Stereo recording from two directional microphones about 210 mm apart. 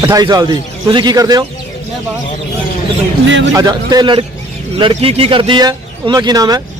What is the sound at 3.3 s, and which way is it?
Speech, 60° right (ahead or behind).